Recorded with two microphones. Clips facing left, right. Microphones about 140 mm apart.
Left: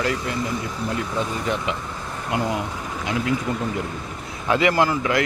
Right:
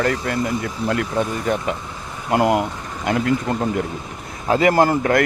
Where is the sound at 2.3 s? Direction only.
60° right (ahead or behind).